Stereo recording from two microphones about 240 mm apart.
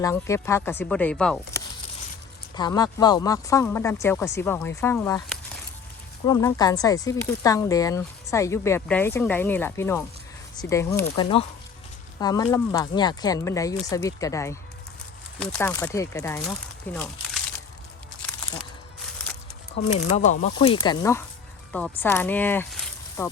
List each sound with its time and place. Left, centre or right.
0.0 s speech: centre
2.6 s speech: centre
6.2 s speech: centre
11.0 s speech: left; by 17.4 s centre
19.9 s speech: left